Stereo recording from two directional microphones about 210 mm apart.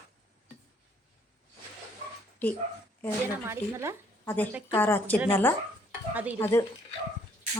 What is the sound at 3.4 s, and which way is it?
Speech, 10° right (ahead or behind).